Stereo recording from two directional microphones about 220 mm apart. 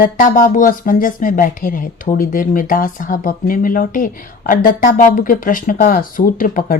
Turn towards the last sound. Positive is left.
turn(degrees=40)  # may be behind; listen again after turning